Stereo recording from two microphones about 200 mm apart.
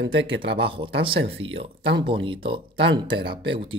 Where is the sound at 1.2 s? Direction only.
65° right (ahead or behind).